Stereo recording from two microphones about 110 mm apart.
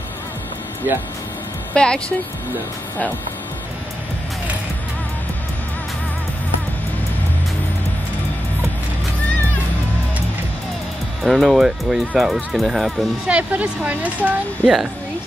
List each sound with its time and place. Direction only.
0.8 s speech: 20° right (ahead or behind)
1.7 s speech: 10° left (ahead or behind)
11.2 s speech: centre (ahead or behind)